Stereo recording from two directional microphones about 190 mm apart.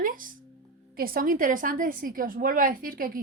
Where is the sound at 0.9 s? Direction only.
50° right (ahead or behind).